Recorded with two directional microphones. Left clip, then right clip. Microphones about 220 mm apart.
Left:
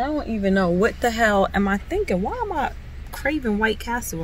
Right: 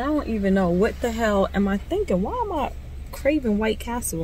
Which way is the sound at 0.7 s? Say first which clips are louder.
Left 1 dB; 15° left (ahead or behind).